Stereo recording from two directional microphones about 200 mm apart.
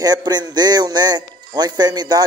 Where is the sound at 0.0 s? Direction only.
20° right (ahead or behind).